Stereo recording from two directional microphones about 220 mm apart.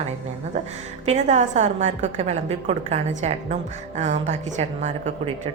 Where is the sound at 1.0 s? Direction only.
30° right (ahead or behind).